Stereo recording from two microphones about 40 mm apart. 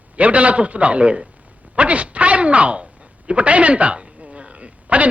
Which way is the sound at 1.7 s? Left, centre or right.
Right.